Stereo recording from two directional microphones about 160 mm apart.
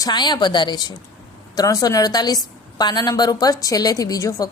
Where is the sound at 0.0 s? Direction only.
25° left (ahead or behind).